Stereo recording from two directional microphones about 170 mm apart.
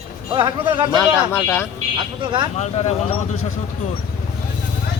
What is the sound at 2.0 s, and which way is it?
Speech, 25° right (ahead or behind).